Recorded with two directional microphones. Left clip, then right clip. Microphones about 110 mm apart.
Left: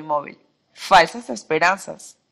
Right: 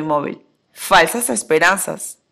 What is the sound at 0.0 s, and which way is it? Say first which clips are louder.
A woman's voice: right 5 dB; 30° right (ahead or behind).